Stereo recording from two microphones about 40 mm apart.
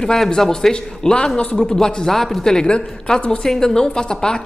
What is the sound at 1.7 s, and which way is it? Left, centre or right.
A woman's voice, centre.